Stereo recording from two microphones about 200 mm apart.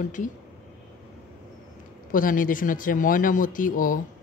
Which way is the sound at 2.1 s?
45° left (ahead or behind).